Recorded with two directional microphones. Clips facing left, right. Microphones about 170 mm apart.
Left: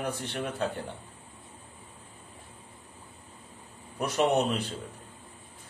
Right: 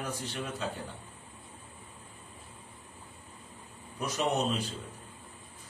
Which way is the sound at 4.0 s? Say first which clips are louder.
Left 5 dB; 60° left (ahead or behind).